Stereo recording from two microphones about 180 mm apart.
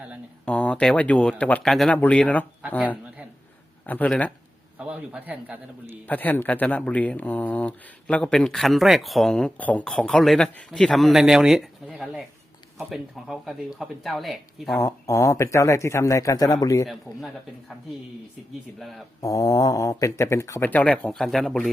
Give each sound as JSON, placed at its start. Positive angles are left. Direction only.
{"t": 0.4, "sound": "speech", "side_deg": 5}
{"t": 4.8, "sound": "a man's voice", "side_deg": -5}
{"t": 6.1, "sound": "speech", "side_deg": 10}
{"t": 14.8, "sound": "speech", "side_deg": 20}
{"t": 16.8, "sound": "speech", "side_deg": 0}
{"t": 18.8, "sound": "speech", "side_deg": 0}
{"t": 19.2, "sound": "speech", "side_deg": 20}